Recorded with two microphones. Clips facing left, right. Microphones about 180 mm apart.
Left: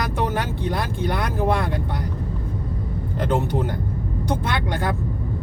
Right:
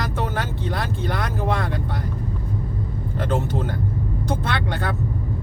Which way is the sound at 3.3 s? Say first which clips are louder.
Left 2 dB; 15° left (ahead or behind).